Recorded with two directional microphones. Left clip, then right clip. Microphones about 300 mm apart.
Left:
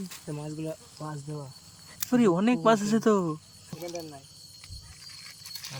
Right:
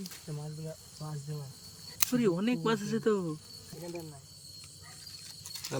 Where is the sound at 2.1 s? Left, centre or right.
Centre.